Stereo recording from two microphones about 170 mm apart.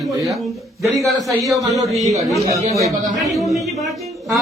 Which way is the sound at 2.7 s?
20° right (ahead or behind).